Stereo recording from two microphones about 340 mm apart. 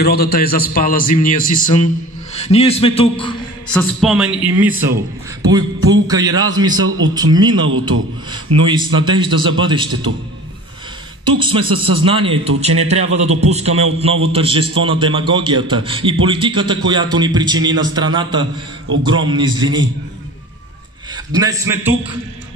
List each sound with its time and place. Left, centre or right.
0.0 s a man's voice: left
3.7 s a man's voice: centre
11.3 s a man's voice: centre
21.1 s a man's voice: centre